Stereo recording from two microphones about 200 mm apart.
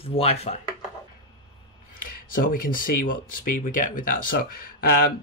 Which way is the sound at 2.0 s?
45° left (ahead or behind).